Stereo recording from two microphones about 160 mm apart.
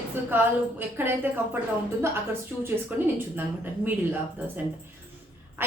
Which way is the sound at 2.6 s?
10° right (ahead or behind).